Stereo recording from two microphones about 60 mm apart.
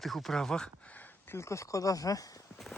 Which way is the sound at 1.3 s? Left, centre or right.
Left.